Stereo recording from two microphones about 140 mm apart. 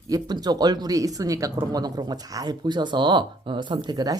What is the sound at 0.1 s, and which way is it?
Speech, 30° right (ahead or behind).